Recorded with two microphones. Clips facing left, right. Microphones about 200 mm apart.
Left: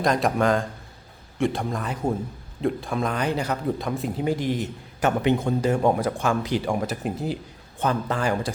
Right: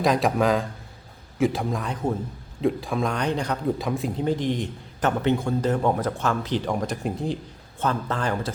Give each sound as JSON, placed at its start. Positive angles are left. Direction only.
{"t": 0.0, "sound": "speech", "side_deg": 0}